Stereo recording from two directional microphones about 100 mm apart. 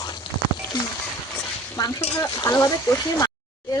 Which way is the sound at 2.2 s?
35° left (ahead or behind).